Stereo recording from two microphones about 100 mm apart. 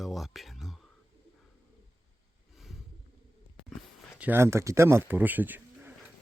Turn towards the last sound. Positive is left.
turn(degrees=-20)  # may be behind; listen again after turning